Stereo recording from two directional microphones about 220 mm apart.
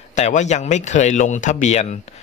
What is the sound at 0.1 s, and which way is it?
Speech, 35° left (ahead or behind).